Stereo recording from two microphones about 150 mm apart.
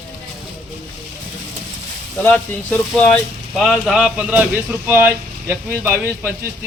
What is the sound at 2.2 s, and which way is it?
Speech, 10° left (ahead or behind).